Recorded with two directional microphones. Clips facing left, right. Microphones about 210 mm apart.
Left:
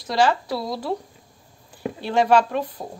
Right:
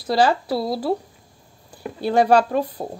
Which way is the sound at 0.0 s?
35° right (ahead or behind).